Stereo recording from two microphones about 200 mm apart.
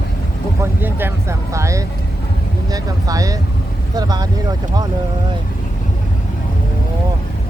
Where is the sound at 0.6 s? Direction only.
10° right (ahead or behind).